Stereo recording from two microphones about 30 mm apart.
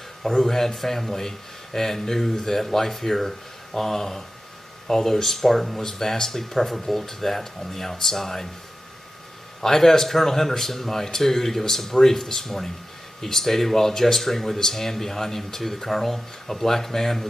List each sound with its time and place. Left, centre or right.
0.2 s speech: centre
9.6 s speech: centre